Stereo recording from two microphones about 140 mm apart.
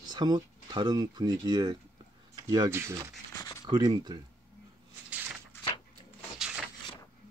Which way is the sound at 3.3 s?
25° left (ahead or behind).